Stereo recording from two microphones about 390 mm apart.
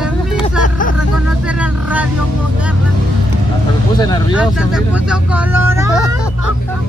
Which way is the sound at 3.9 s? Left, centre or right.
Centre.